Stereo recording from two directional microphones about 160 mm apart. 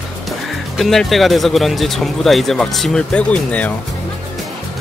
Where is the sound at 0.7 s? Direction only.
Centre (ahead or behind).